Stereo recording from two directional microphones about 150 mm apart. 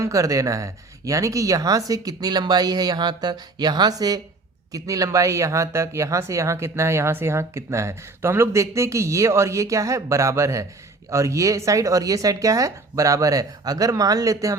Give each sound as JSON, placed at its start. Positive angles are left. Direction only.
{"t": 0.0, "sound": "speech", "side_deg": -20}